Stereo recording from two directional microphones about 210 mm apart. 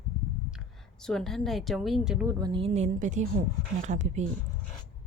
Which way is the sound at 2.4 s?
25° right (ahead or behind).